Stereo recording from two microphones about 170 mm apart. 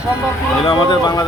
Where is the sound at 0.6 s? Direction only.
25° left (ahead or behind).